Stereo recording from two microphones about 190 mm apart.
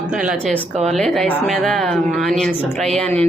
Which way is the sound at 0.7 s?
35° right (ahead or behind).